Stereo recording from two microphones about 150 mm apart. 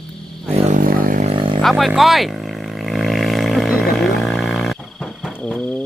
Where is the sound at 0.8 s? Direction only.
70° right (ahead or behind).